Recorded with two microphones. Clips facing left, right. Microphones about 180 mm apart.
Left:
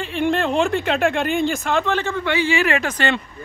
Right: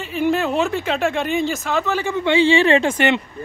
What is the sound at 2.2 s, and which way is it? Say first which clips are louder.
Speech: right 6 dB; 25° right (ahead or behind).